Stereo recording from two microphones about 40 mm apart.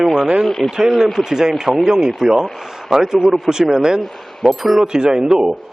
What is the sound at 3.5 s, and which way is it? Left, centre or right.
Speech, centre.